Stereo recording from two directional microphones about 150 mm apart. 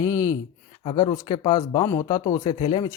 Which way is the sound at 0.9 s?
30° left (ahead or behind).